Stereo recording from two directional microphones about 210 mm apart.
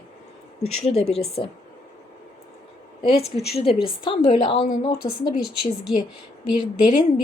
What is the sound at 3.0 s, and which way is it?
Speech, 25° left (ahead or behind).